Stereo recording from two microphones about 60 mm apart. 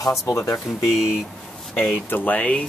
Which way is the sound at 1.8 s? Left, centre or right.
Left.